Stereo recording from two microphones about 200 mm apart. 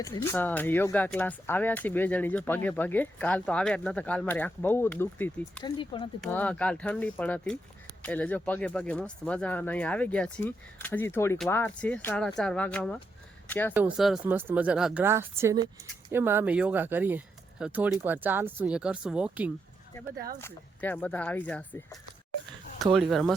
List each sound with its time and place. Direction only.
0.0 s speech: 15° left (ahead or behind)
5.6 s speech: 25° left (ahead or behind)
6.2 s speech: 5° left (ahead or behind)
13.7 s speech: 5° right (ahead or behind)
20.4 s speech: 10° left (ahead or behind)